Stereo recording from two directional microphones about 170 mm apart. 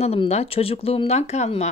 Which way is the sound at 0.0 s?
35° left (ahead or behind).